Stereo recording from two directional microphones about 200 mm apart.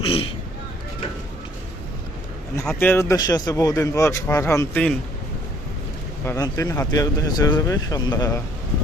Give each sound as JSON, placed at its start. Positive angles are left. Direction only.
{"t": 0.0, "sound": "speech", "side_deg": 30}
{"t": 2.6, "sound": "speech", "side_deg": 10}
{"t": 6.2, "sound": "speech", "side_deg": 15}